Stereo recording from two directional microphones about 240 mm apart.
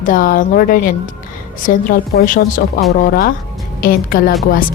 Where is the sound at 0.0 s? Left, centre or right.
Left.